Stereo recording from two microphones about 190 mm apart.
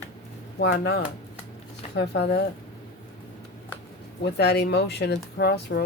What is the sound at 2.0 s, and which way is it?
Speech, 60° left (ahead or behind).